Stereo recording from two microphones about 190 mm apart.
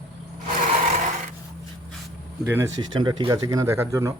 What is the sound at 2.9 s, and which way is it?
Speech, 25° right (ahead or behind).